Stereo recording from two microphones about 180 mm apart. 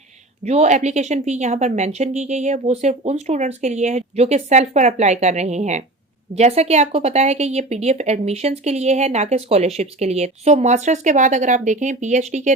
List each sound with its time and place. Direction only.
0.4 s speech: 40° right (ahead or behind)